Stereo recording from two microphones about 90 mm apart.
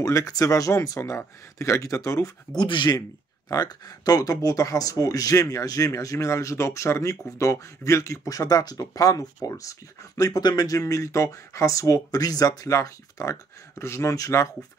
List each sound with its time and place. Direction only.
0.0 s speech: 40° left (ahead or behind)
2.5 s speech: 55° left (ahead or behind)
3.4 s speech: 45° left (ahead or behind)